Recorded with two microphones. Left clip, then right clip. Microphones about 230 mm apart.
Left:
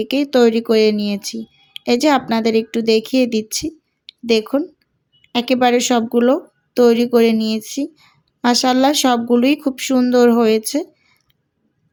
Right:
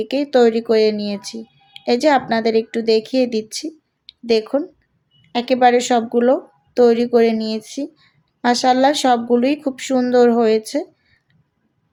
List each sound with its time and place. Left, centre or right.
0.0 s speech: left